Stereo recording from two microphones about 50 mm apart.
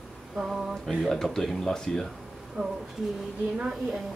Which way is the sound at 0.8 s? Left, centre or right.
Centre.